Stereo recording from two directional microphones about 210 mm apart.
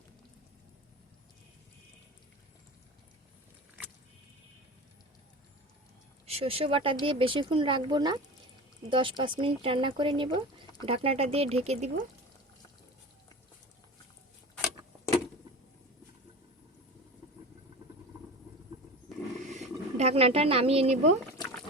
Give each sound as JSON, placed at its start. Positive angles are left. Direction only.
{"t": 6.2, "sound": "speech", "side_deg": -30}
{"t": 19.1, "sound": "roaring cats", "side_deg": 0}
{"t": 19.5, "sound": "a sound", "side_deg": -35}